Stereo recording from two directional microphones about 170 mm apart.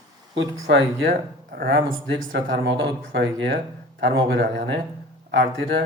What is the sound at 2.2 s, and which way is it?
Speech, 50° right (ahead or behind).